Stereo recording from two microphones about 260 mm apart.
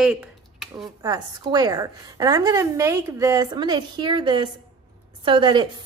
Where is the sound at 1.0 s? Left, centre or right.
Centre.